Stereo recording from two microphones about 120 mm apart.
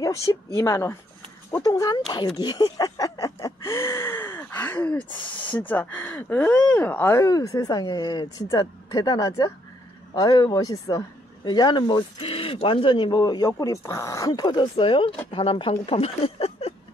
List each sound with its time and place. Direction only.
0.0 s speech: 25° left (ahead or behind)
2.0 s a sound: 40° left (ahead or behind); by 4.7 s 20° left (ahead or behind)
5.4 s speech: 15° left (ahead or behind); by 16.7 s 55° left (ahead or behind)